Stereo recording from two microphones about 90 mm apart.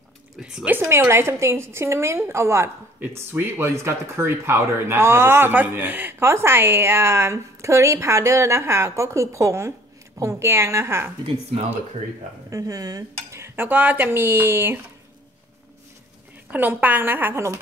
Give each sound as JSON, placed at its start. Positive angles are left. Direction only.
{"t": 0.4, "sound": "speech", "side_deg": -10}
{"t": 0.7, "sound": "speech", "side_deg": -25}
{"t": 12.4, "sound": "dishes", "side_deg": -40}
{"t": 13.4, "sound": "speech", "side_deg": -20}
{"t": 16.4, "sound": "speech", "side_deg": -20}